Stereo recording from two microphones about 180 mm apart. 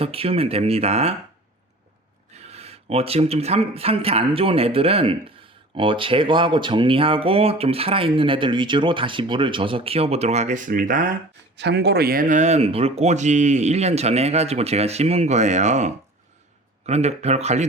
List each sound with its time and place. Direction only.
0.0 s speech: 30° right (ahead or behind)
2.3 s speech: 35° right (ahead or behind)
11.5 s speech: 70° right (ahead or behind); by 17.7 s 40° right (ahead or behind)